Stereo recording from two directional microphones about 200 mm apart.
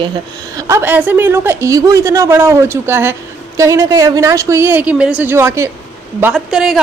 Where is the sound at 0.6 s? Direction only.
15° right (ahead or behind).